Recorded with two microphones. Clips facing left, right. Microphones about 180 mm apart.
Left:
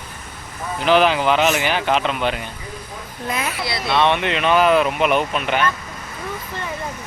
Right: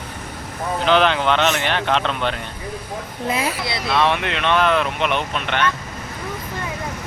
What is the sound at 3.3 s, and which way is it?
Speech, 30° right (ahead or behind).